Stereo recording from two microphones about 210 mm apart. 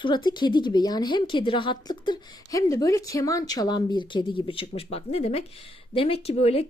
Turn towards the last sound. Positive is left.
turn(degrees=30)  # may be behind; listen again after turning